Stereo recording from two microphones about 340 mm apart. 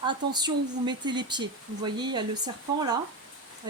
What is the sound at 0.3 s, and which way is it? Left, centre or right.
Speech, centre.